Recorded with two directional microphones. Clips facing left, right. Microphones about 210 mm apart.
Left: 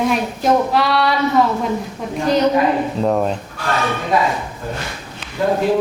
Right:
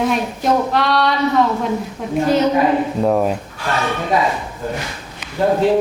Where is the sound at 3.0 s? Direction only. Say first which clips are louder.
Right 1 dB; 5° right (ahead or behind).